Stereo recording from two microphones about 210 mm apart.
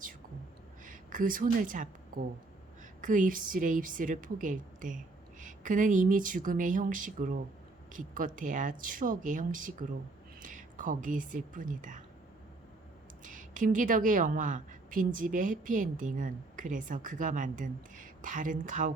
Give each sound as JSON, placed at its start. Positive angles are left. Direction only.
{"t": 0.9, "sound": "a woman's voice", "side_deg": -40}
{"t": 13.2, "sound": "a woman's voice", "side_deg": -40}